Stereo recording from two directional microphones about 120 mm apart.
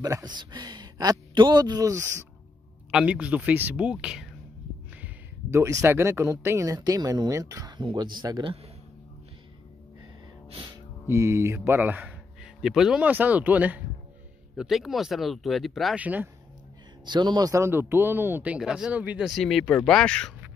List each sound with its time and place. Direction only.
0.0 s a man's voice: 35° right (ahead or behind)
2.9 s speech: 10° right (ahead or behind)
5.0 s speech: 25° right (ahead or behind)
11.1 s speech: 20° right (ahead or behind)
14.6 s speech: centre (ahead or behind)
16.0 s speech: 15° right (ahead or behind)
17.0 s speech: 40° right (ahead or behind); by 20.3 s 5° left (ahead or behind)